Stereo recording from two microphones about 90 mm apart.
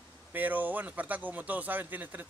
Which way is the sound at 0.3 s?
20° right (ahead or behind).